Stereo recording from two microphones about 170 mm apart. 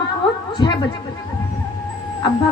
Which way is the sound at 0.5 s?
25° left (ahead or behind).